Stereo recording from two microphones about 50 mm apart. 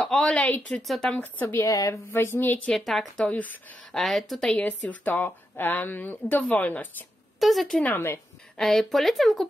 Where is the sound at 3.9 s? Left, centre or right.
Centre.